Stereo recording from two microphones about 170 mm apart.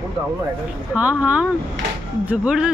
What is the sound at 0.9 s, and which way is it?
A woman's voice, 10° right (ahead or behind).